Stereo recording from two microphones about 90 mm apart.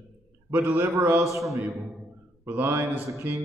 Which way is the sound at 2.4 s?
20° right (ahead or behind).